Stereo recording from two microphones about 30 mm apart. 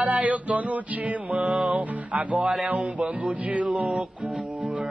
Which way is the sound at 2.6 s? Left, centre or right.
Right.